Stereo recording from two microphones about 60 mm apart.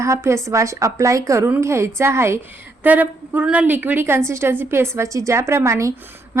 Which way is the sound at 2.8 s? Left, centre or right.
Right.